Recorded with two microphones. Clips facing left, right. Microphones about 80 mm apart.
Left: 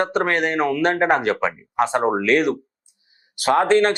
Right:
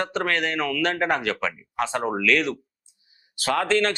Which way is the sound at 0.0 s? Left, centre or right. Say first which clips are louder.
Left 5 dB; left.